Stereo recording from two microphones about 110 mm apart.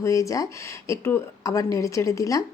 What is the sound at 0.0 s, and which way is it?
A woman's voice, 30° left (ahead or behind).